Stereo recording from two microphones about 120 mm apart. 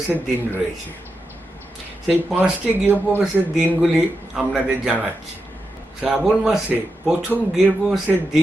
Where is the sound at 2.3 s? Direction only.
5° right (ahead or behind).